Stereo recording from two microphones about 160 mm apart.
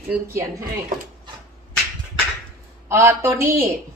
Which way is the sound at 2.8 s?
15° right (ahead or behind).